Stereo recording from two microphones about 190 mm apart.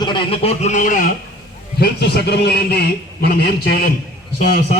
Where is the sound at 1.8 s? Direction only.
60° left (ahead or behind).